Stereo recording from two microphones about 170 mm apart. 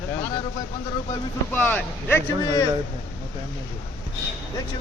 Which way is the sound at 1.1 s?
10° left (ahead or behind).